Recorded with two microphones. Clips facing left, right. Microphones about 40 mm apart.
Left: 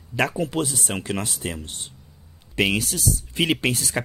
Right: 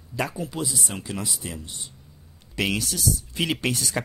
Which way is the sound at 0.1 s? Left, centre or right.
Left.